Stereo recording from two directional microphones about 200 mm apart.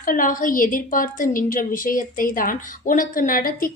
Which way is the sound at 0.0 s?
45° left (ahead or behind).